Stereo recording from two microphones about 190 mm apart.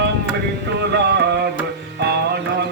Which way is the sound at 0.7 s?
60° right (ahead or behind).